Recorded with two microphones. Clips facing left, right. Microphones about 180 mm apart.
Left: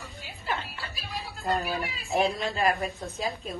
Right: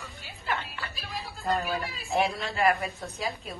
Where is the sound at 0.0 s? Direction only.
Centre (ahead or behind).